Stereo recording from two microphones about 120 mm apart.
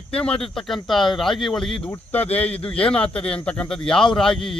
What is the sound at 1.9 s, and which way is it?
Speech, 15° left (ahead or behind).